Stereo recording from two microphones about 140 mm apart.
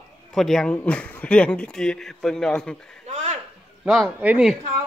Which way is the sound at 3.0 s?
55° right (ahead or behind).